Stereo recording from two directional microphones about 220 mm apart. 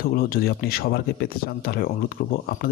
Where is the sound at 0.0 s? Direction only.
40° left (ahead or behind).